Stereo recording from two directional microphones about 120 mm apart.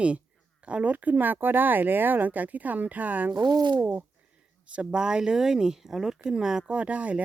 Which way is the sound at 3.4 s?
35° right (ahead or behind).